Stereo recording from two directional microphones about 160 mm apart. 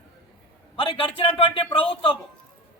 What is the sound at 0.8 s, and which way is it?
A man's voice, 35° left (ahead or behind).